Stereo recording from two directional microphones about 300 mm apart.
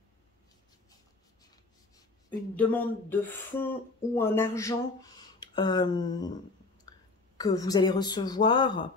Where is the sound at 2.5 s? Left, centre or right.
Centre.